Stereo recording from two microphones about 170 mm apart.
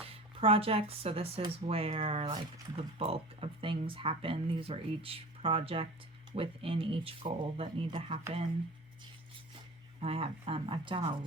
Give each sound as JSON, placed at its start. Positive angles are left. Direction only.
{"t": 0.0, "sound": "speech", "side_deg": -35}
{"t": 10.0, "sound": "speech", "side_deg": -35}